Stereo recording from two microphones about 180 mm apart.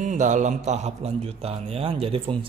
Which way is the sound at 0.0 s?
45° right (ahead or behind).